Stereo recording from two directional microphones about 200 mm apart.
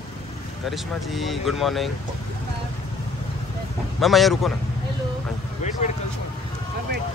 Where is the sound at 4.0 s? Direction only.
Centre (ahead or behind).